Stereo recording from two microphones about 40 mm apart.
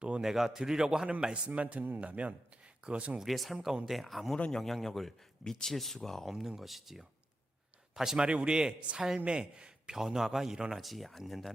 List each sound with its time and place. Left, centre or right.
0.2 s a man's voice: centre
1.5 s a man's voice: right
3.2 s a man's voice: centre
6.2 s a man's voice: centre
8.3 s a man's voice: right
9.9 s a man's voice: centre
10.8 s a man's voice: centre